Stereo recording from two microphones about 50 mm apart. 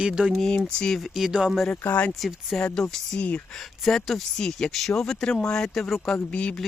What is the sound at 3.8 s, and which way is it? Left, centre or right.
Speech, centre.